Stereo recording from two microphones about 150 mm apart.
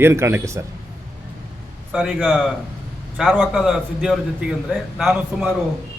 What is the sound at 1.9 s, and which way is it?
A man's voice, 5° right (ahead or behind).